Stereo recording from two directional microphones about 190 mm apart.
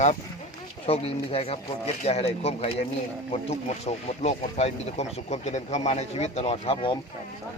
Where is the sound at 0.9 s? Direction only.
30° left (ahead or behind).